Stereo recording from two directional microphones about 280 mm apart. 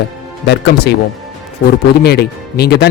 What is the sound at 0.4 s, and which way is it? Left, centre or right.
Speech, left.